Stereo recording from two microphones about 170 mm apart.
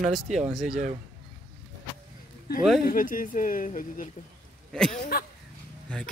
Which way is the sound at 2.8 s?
55° left (ahead or behind).